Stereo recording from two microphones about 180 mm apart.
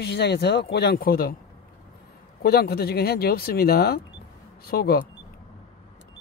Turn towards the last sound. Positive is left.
turn(degrees=60)  # may be behind; listen again after turning